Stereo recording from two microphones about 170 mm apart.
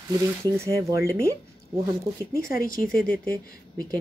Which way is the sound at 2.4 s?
60° left (ahead or behind).